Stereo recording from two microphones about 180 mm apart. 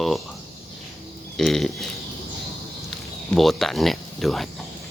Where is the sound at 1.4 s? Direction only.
Centre (ahead or behind).